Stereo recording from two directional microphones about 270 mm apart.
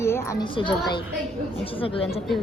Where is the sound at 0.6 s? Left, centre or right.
Centre.